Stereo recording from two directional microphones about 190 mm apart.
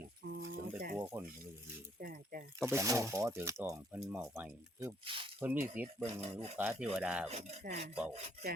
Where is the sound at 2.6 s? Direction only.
15° right (ahead or behind).